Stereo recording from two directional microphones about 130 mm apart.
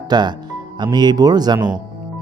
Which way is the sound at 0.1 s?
35° right (ahead or behind).